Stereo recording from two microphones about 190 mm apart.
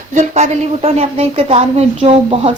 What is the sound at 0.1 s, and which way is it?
A woman's voice, 35° right (ahead or behind).